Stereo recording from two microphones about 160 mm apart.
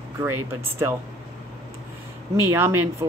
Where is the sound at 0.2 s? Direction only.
15° right (ahead or behind).